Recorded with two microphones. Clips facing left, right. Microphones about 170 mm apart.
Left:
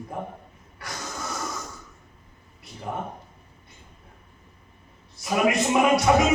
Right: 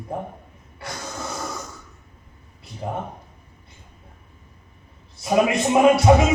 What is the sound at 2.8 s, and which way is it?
Speech, 30° right (ahead or behind).